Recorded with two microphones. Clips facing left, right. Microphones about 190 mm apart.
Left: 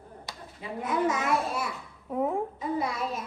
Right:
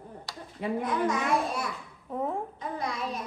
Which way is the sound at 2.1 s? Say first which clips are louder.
Left 3 dB; 10° left (ahead or behind).